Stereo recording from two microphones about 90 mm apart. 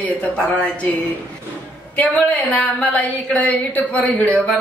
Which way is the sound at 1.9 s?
15° left (ahead or behind).